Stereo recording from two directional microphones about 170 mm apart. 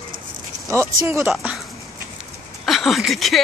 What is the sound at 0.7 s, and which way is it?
Speech, 15° right (ahead or behind).